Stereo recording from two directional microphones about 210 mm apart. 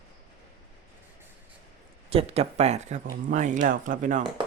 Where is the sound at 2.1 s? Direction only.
30° right (ahead or behind).